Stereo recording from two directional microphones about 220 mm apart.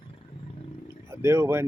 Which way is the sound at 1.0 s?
10° right (ahead or behind).